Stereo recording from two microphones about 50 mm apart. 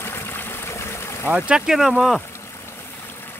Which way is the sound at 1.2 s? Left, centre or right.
Centre.